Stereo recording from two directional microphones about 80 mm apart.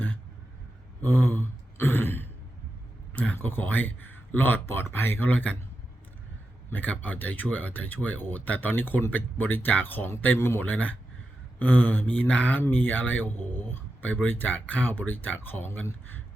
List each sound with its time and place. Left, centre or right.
1.0 s throat clearing: left
3.1 s speech: left
6.7 s speech: left